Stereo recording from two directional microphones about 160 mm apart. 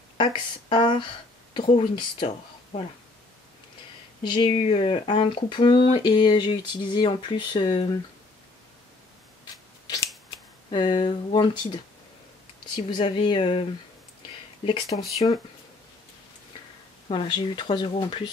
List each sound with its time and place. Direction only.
0.2 s speech: 30° left (ahead or behind)
4.2 s speech: 30° left (ahead or behind)
10.7 s speech: 30° left (ahead or behind)
14.9 s speech: 40° left (ahead or behind)
17.1 s speech: 30° left (ahead or behind)